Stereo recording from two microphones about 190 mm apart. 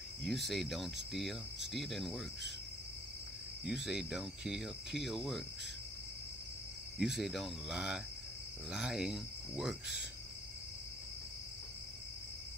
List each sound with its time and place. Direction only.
0.2 s speech: centre (ahead or behind)
3.6 s speech: 5° right (ahead or behind)
7.0 s speech: centre (ahead or behind)